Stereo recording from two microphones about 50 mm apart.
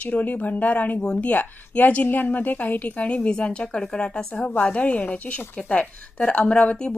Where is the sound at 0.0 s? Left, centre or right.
Left.